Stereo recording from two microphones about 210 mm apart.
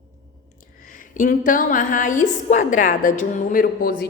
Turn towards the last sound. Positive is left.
turn(degrees=40)  # may be behind; listen again after turning